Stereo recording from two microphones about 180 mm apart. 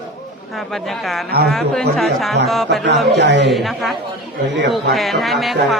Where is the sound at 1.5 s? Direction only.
Centre (ahead or behind).